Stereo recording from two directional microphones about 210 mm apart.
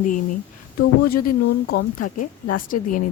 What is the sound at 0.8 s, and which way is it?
Speech, 45° left (ahead or behind).